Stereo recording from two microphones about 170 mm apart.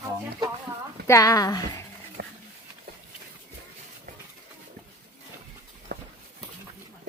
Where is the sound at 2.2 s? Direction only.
65° right (ahead or behind).